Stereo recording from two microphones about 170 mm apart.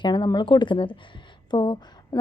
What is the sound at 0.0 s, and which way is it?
A woman's voice, 25° left (ahead or behind).